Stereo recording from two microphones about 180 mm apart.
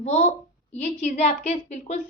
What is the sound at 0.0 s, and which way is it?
A woman's voice, 40° left (ahead or behind).